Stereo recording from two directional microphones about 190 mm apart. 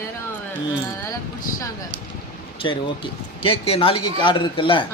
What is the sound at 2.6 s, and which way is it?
A man's voice, 25° left (ahead or behind).